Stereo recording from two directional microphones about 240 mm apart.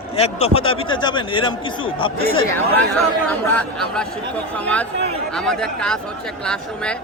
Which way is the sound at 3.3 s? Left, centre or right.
Centre.